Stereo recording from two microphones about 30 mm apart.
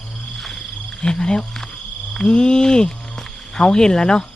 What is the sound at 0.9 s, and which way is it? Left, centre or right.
Speech, left.